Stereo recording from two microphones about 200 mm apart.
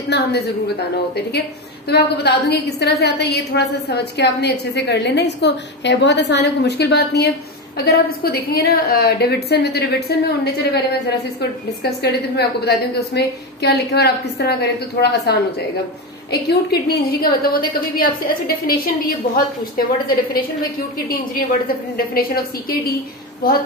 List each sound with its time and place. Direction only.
0.1 s a woman's voice: 55° left (ahead or behind)
21.1 s a woman's voice: 45° left (ahead or behind)